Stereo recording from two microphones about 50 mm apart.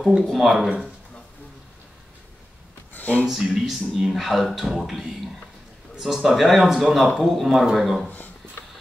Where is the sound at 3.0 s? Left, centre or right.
Left.